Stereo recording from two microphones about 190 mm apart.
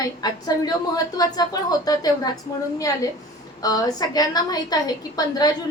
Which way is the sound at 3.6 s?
20° left (ahead or behind).